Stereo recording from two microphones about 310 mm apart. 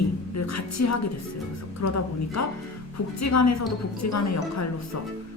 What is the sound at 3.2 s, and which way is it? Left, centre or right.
A woman's voice, left.